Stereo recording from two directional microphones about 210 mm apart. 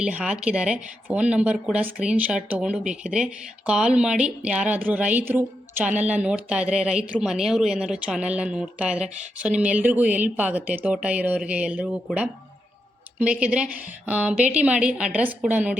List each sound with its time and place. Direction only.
0.0 s speech: 5° right (ahead or behind)